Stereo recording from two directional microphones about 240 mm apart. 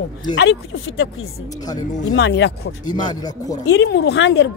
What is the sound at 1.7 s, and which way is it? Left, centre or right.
Speech, centre.